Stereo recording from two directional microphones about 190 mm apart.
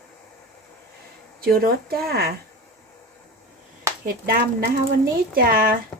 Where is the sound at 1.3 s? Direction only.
50° right (ahead or behind).